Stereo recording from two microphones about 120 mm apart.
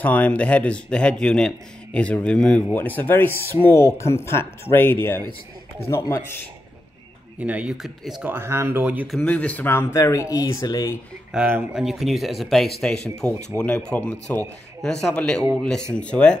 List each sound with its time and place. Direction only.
0.0 s speech: 15° left (ahead or behind)
7.3 s speech: 10° right (ahead or behind)
8.3 s speech: 20° right (ahead or behind)
9.0 s speech: centre (ahead or behind)
9.3 s speech: 10° left (ahead or behind); by 11.0 s 30° left (ahead or behind)
11.3 s speech: 10° right (ahead or behind); by 16.3 s 10° left (ahead or behind)